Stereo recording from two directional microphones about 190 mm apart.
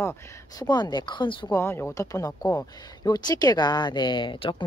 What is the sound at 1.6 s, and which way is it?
Speech, 15° left (ahead or behind).